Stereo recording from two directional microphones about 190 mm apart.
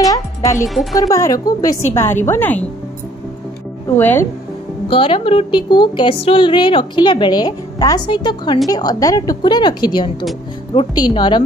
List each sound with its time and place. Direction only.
0.9 s a woman's voice: 20° left (ahead or behind)
3.9 s a woman's voice: 10° left (ahead or behind)
4.8 s a woman's voice: 30° left (ahead or behind)